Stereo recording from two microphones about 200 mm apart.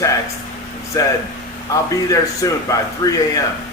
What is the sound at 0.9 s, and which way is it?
A man's voice, 15° left (ahead or behind).